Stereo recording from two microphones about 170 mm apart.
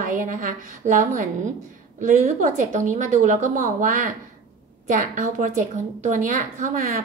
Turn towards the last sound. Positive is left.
turn(degrees=-50)  # may be behind; listen again after turning